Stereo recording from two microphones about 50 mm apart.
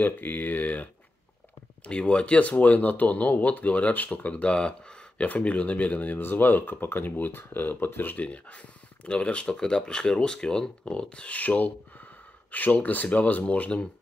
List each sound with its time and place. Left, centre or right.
0.0 s speech: left
1.9 s speech: left
6.1 s speech: left
9.0 s speech: left
11.3 s speech: left